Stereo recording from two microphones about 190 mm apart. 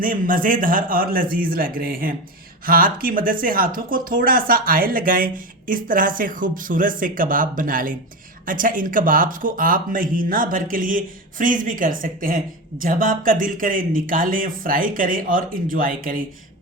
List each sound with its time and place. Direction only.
0.0 s speech: 45° right (ahead or behind)